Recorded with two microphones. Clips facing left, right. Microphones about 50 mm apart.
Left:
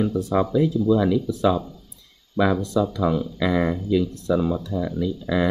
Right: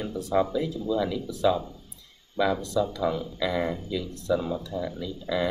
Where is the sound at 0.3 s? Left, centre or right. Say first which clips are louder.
Left 2 dB; left.